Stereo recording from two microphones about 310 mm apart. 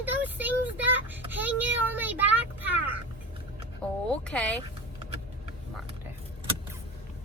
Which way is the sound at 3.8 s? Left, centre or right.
Centre.